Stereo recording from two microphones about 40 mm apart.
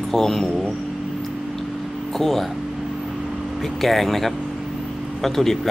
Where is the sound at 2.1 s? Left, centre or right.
Centre.